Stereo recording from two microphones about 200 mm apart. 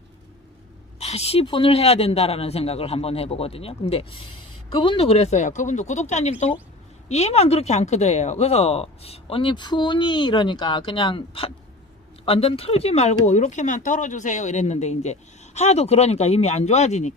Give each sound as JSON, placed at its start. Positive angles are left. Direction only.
{"t": 0.9, "sound": "a woman's voice", "side_deg": 30}